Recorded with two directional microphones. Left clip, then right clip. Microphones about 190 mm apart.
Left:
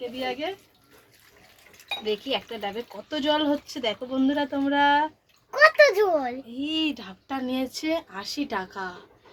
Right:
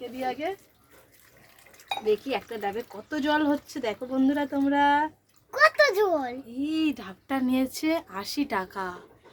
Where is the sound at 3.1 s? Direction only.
25° right (ahead or behind).